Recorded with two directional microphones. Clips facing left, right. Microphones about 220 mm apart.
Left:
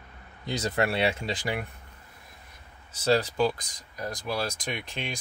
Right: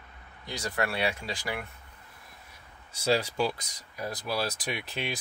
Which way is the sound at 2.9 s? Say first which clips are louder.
Left 3 dB; 10° right (ahead or behind).